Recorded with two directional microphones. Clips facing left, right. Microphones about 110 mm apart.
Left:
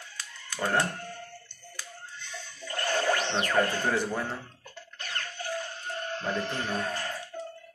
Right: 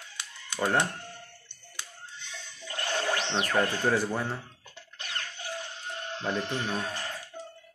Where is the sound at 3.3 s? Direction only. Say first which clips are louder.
Left 1 dB; 10° right (ahead or behind).